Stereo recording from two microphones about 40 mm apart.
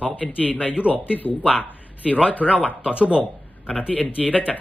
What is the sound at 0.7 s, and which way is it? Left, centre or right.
Speech, right.